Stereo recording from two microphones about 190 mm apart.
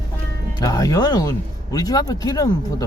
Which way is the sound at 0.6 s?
20° left (ahead or behind).